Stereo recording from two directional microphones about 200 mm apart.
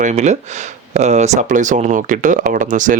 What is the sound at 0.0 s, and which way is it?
Speech, 35° right (ahead or behind).